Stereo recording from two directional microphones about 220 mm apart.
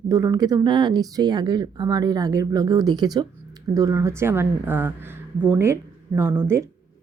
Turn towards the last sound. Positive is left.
turn(degrees=-10)  # may be behind; listen again after turning